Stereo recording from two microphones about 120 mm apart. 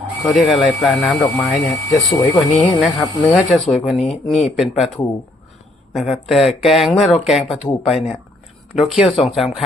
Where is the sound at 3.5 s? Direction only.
5° left (ahead or behind).